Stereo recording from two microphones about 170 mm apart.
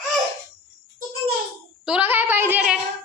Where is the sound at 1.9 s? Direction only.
10° right (ahead or behind).